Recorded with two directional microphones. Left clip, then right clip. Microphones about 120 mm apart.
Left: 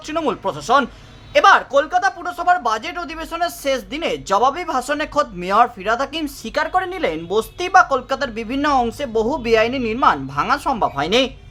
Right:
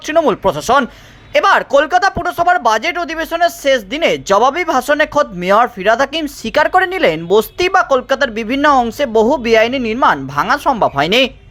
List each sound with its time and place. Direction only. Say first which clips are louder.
0.1 s speech: right 9 dB; 40° right (ahead or behind)
4.0 s speech: right 5 dB; 40° right (ahead or behind)